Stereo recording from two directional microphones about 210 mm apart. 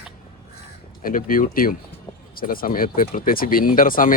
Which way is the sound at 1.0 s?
40° left (ahead or behind).